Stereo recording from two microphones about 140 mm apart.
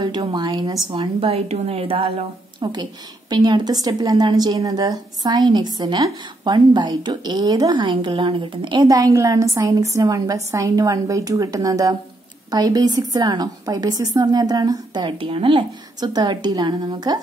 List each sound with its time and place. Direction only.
0.3 s a woman's voice: 30° right (ahead or behind)
2.6 s a woman's voice: 30° right (ahead or behind)